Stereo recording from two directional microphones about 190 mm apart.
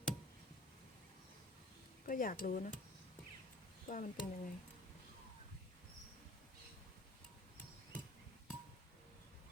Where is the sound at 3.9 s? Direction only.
45° left (ahead or behind).